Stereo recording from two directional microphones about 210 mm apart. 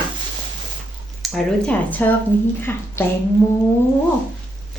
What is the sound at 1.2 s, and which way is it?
Speech, 5° left (ahead or behind).